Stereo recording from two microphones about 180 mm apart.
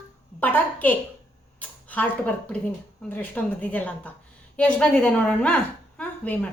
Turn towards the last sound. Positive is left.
turn(degrees=10)  # may be behind; listen again after turning